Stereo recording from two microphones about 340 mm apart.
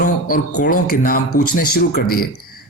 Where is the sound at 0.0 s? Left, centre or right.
Left.